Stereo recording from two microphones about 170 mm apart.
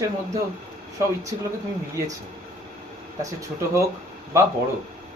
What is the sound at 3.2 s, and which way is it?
Speech, 20° right (ahead or behind).